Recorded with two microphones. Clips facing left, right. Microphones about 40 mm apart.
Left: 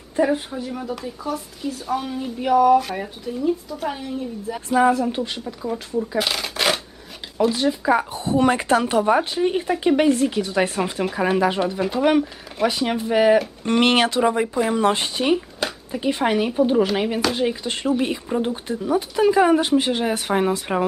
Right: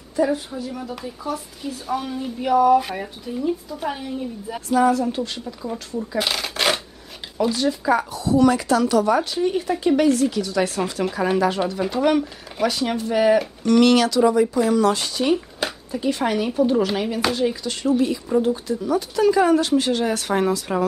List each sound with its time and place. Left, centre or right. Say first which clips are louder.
0.1 s a sound: left 1 dB; left
0.5 s speech: left 2 dB; centre
1.0 s a woman's voice: left 1 dB; centre
4.6 s speech: even; left
5.0 s speech: left 1 dB; centre
6.1 s shuffling cards: right 3 dB; centre
7.3 s speech: left 1 dB; centre
8.1 s speech: right 2 dB; left
11.1 s speech: even; centre
13.7 s speech: right 3 dB; left